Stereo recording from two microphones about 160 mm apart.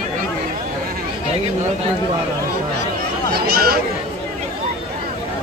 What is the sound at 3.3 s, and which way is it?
Speech, 75° right (ahead or behind).